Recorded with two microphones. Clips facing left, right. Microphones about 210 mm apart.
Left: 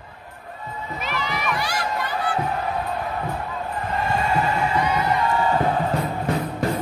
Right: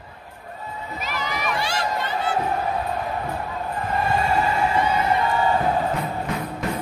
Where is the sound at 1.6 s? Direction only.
25° right (ahead or behind).